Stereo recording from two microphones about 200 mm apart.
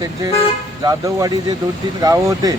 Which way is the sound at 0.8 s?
20° right (ahead or behind).